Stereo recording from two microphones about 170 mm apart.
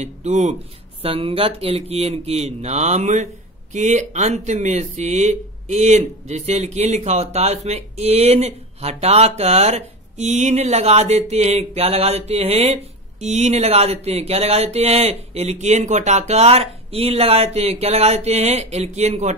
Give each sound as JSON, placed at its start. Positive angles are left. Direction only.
{"t": 0.0, "sound": "speech", "side_deg": -40}